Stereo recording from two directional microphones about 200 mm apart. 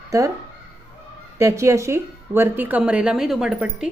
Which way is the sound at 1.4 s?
15° right (ahead or behind).